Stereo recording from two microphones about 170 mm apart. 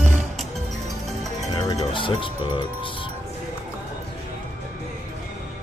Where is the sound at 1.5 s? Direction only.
20° left (ahead or behind).